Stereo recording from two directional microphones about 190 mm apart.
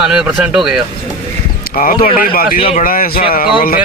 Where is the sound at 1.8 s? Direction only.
50° left (ahead or behind).